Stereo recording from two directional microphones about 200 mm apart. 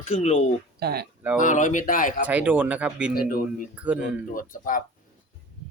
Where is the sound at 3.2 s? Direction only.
45° left (ahead or behind).